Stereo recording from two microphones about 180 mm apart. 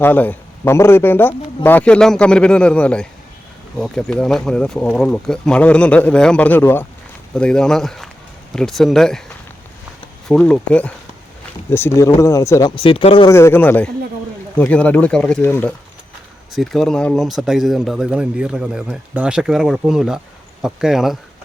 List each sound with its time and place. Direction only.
0.0 s a man's voice: 10° left (ahead or behind)
10.2 s a man's voice: 5° left (ahead or behind); by 13.3 s 30° left (ahead or behind)
13.3 s a man's voice: 15° left (ahead or behind)